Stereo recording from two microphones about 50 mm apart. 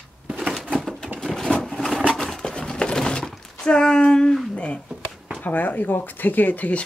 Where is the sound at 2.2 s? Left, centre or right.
Centre.